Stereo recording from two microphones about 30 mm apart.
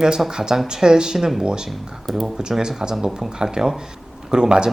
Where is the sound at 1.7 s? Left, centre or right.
Centre.